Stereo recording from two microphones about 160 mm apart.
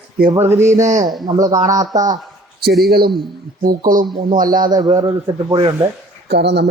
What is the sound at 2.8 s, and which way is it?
Speech, 75° right (ahead or behind).